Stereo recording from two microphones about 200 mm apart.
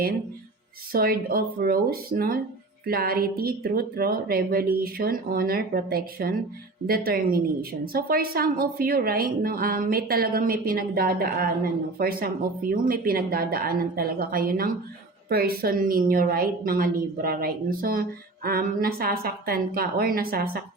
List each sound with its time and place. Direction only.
0.9 s a woman's voice: 50° right (ahead or behind)